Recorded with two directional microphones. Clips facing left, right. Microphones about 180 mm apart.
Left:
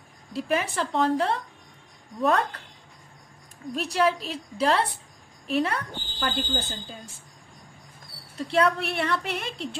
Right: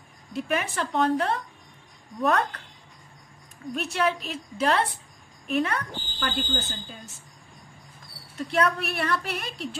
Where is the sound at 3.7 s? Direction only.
35° left (ahead or behind).